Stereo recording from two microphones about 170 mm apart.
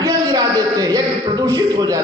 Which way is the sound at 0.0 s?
20° right (ahead or behind).